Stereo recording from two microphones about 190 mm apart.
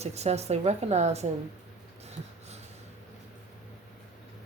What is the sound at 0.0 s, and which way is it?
A man's voice, 35° right (ahead or behind).